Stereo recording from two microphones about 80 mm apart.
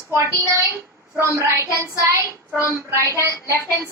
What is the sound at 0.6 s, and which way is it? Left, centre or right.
A child's voice, right.